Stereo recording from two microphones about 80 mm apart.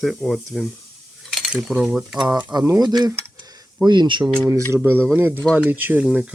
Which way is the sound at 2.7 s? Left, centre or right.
Right.